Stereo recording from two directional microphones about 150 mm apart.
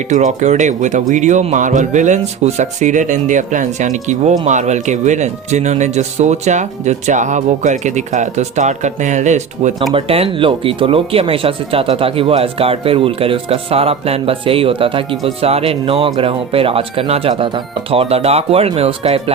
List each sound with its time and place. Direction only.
0.1 s speech: 55° right (ahead or behind)
9.9 s speech: 40° right (ahead or behind)